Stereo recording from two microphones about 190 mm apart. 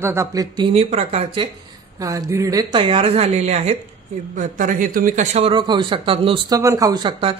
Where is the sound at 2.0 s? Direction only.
20° right (ahead or behind).